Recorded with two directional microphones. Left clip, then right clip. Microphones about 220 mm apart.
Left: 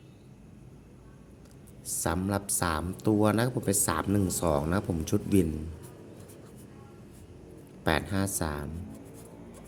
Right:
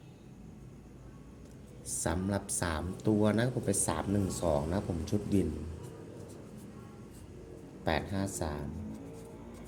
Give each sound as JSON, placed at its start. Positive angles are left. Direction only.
{"t": 1.9, "sound": "speech", "side_deg": 20}
{"t": 7.9, "sound": "speech", "side_deg": 25}